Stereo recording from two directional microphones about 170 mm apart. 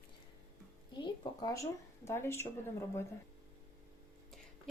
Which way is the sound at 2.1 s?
15° left (ahead or behind).